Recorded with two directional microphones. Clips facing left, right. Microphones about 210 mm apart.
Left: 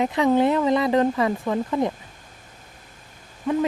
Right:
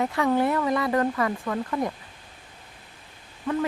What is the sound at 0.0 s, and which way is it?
Speech, 20° left (ahead or behind).